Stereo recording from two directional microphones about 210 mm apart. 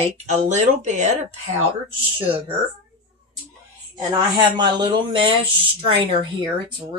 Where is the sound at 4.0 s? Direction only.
20° right (ahead or behind).